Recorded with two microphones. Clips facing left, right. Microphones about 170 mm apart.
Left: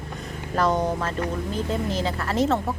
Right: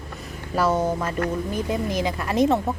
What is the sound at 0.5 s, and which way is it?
Speech, 5° right (ahead or behind).